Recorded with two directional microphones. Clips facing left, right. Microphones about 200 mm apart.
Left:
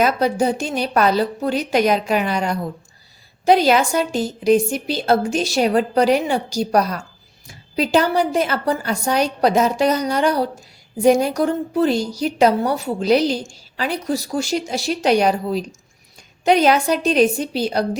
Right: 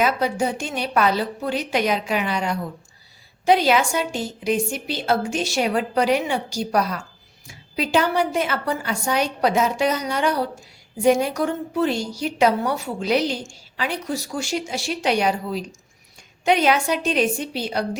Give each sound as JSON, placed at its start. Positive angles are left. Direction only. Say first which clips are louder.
{"t": 0.0, "sound": "a woman's voice", "louder": "left 4 dB", "side_deg": 40}